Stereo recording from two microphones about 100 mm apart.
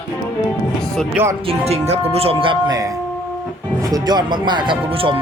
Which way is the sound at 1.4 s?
90° right.